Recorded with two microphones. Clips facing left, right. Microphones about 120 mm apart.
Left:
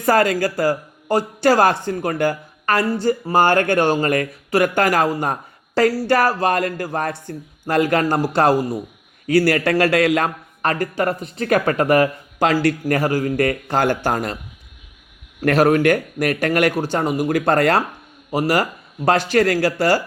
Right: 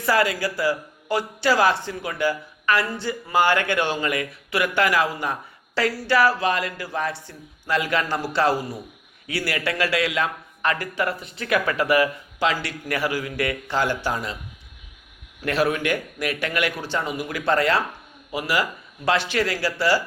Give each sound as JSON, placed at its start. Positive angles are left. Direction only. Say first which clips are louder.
{"t": 0.0, "sound": "speech", "louder": "left 5 dB", "side_deg": 45}
{"t": 15.4, "sound": "speech", "louder": "left 8 dB", "side_deg": 45}